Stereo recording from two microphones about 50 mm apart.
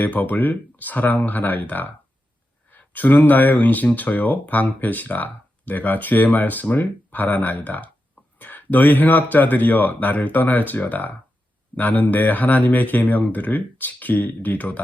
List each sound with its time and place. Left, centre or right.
0.0 s speech: left